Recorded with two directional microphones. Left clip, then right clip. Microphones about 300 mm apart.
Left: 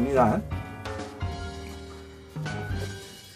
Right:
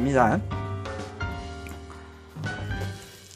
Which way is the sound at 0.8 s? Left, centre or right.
Centre.